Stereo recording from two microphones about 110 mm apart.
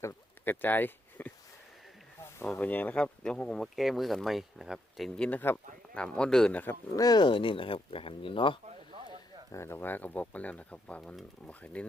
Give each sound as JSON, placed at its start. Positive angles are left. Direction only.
{"t": 0.0, "sound": "a sound", "side_deg": 20}
{"t": 2.5, "sound": "speech", "side_deg": 15}
{"t": 6.9, "sound": "speech", "side_deg": 35}
{"t": 9.5, "sound": "speech", "side_deg": 25}